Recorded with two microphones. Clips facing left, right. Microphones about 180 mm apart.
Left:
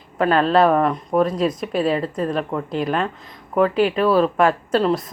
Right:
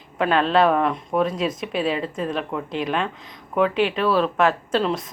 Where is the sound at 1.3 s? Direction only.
45° left (ahead or behind).